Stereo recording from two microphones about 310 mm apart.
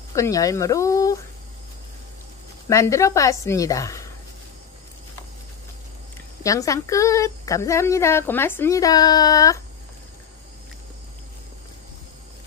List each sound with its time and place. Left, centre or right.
0.1 s speech: centre
2.7 s speech: centre
6.4 s speech: centre